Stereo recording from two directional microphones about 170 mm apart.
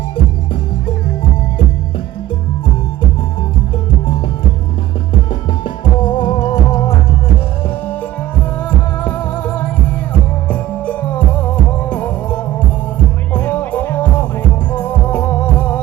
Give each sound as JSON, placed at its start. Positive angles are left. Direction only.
{"t": 5.3, "sound": "music", "side_deg": 30}
{"t": 9.0, "sound": "music", "side_deg": 10}